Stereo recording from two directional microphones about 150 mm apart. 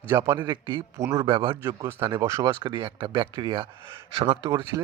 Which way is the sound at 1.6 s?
20° right (ahead or behind).